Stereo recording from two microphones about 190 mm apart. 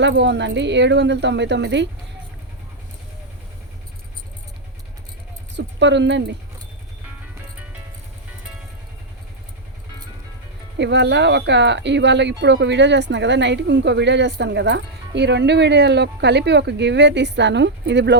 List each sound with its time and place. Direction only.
0.0 s speech: 70° right (ahead or behind)
5.5 s speech: 65° right (ahead or behind)
10.8 s speech: 65° right (ahead or behind)